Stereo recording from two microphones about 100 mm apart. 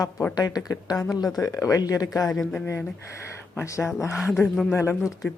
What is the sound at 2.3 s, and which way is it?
Speech, 5° left (ahead or behind).